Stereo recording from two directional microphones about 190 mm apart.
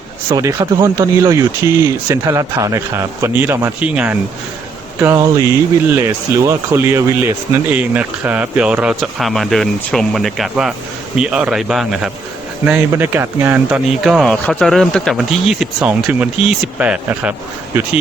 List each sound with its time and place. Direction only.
0.3 s speech: 15° right (ahead or behind)